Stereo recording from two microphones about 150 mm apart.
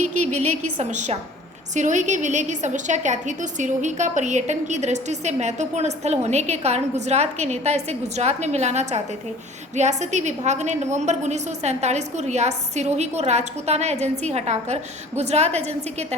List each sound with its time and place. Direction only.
0.0 s a woman's voice: 50° right (ahead or behind)